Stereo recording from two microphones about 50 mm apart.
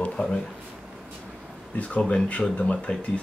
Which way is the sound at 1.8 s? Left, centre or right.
Left.